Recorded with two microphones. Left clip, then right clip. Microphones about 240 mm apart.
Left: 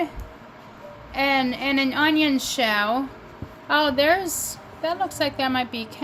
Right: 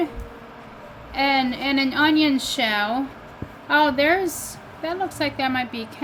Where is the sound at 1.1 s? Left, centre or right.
Centre.